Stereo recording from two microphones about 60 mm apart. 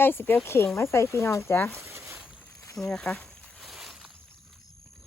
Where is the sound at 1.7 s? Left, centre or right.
Right.